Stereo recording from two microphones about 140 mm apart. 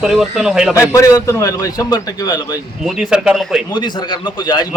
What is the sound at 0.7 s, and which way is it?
A man's voice, 20° left (ahead or behind).